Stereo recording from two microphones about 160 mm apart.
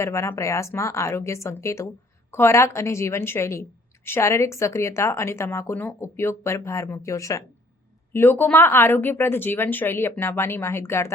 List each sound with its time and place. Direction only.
0.0 s a woman's voice: 15° left (ahead or behind)